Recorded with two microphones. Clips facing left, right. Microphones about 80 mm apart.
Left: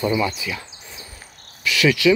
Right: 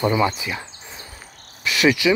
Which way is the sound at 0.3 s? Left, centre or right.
Right.